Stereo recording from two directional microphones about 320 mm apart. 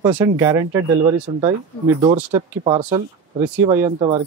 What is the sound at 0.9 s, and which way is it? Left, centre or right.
Speech, right.